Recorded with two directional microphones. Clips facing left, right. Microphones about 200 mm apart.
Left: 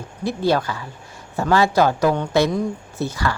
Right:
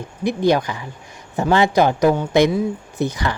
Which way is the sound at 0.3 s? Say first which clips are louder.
Right 3 dB; 15° right (ahead or behind).